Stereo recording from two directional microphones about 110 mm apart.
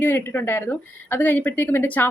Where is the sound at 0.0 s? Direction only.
15° left (ahead or behind).